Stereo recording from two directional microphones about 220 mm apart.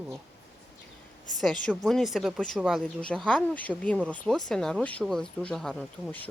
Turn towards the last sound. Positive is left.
turn(degrees=0)  # may be behind; listen again after turning